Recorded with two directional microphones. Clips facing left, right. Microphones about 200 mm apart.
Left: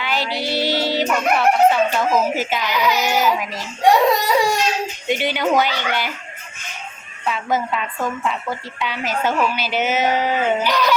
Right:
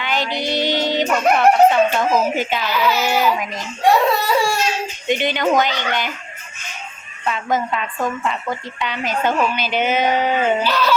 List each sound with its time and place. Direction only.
0.0 s music: 5° left (ahead or behind)
0.3 s speech: 5° left (ahead or behind)
2.6 s speech: 15° left (ahead or behind)
3.2 s a woman's voice: 5° left (ahead or behind)
4.3 s speech: 15° left (ahead or behind)
7.3 s a woman's voice: 5° left (ahead or behind)